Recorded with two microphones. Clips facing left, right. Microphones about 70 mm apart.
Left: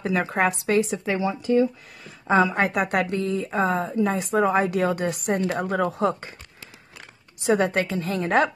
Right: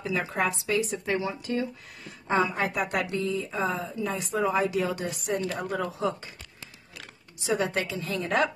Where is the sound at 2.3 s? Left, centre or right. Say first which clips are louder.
Left 6 dB; left.